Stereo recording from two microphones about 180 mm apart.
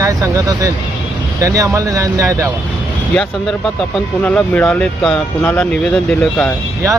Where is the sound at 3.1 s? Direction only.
Centre (ahead or behind).